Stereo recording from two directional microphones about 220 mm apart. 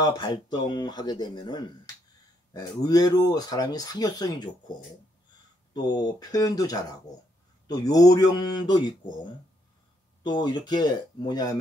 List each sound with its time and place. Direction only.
0.0 s speech: 20° left (ahead or behind)
5.7 s speech: 20° left (ahead or behind)
10.2 s speech: 20° left (ahead or behind)